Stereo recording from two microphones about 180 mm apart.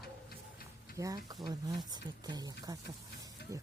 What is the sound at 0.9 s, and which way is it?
Speech, 20° right (ahead or behind).